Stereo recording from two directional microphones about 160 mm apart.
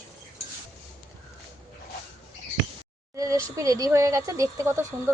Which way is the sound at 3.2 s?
20° right (ahead or behind).